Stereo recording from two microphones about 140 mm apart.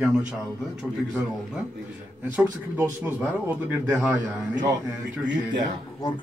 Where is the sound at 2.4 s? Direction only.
15° right (ahead or behind).